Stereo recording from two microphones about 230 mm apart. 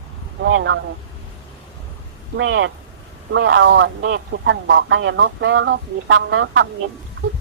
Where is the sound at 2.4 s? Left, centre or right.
Right.